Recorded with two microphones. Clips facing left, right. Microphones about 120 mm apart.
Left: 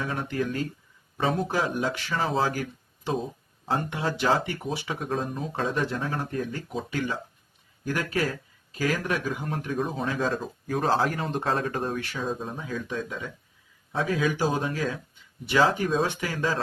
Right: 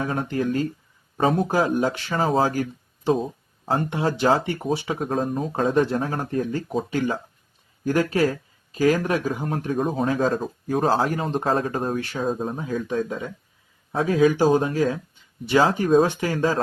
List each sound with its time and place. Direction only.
0.0 s speech: 35° right (ahead or behind)
1.1 s speech: 45° right (ahead or behind)
10.7 s speech: 30° right (ahead or behind)